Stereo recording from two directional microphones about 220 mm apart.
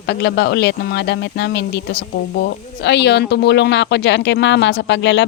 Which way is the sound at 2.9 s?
50° left (ahead or behind).